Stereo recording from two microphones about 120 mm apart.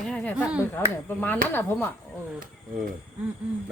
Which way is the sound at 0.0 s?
5° left (ahead or behind).